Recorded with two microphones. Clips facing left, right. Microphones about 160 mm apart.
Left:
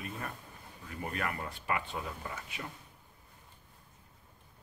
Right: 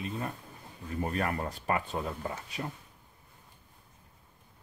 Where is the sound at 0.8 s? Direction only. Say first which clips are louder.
Right 5 dB; 35° right (ahead or behind).